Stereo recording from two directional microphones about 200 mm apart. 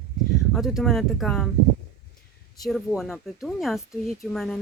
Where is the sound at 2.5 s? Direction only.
Centre (ahead or behind).